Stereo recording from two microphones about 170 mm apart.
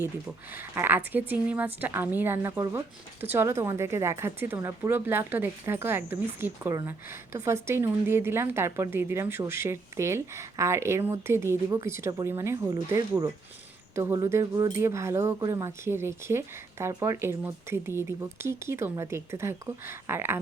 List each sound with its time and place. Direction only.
0.5 s speech: 10° right (ahead or behind)